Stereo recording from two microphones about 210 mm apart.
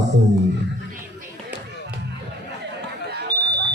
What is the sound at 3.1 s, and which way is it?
Fire alarm, 50° right (ahead or behind).